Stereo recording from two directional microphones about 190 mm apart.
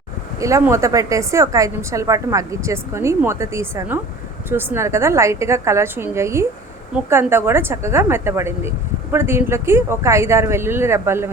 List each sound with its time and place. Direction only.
0.3 s a woman's voice: 15° right (ahead or behind)